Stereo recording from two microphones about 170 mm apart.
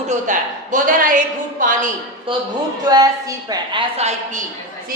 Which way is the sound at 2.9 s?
20° right (ahead or behind).